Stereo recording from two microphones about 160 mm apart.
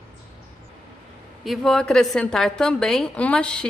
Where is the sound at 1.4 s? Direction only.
Centre (ahead or behind).